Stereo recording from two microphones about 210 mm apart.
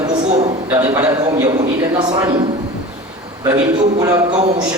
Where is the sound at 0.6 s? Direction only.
10° right (ahead or behind).